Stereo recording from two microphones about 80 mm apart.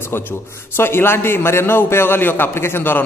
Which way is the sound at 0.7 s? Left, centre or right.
Left.